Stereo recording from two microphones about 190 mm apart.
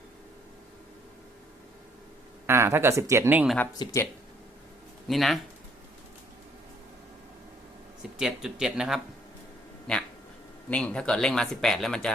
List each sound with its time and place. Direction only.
2.5 s speech: 15° right (ahead or behind)
3.8 s speech: 25° left (ahead or behind)
5.0 s speech: centre (ahead or behind)
8.2 s speech: centre (ahead or behind)